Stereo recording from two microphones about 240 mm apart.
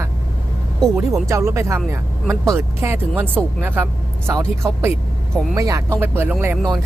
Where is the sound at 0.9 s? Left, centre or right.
Centre.